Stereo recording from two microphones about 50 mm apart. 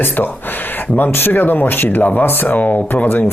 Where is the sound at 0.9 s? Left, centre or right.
Left.